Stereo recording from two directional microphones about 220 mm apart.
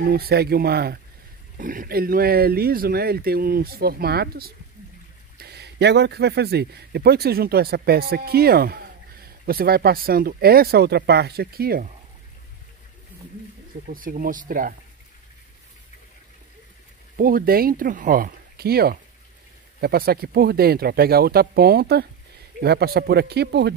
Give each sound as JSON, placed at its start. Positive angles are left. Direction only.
{"t": 0.0, "sound": "speech", "side_deg": -45}
{"t": 13.8, "sound": "speech", "side_deg": -40}
{"t": 17.2, "sound": "speech", "side_deg": -40}